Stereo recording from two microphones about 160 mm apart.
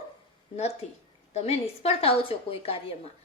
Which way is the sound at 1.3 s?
40° left (ahead or behind).